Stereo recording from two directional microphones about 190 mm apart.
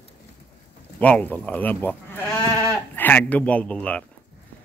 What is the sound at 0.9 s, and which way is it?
A man's voice, 10° left (ahead or behind).